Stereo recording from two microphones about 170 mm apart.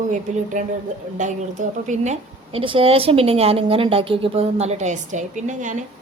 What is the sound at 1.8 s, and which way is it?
A woman's voice, 45° right (ahead or behind).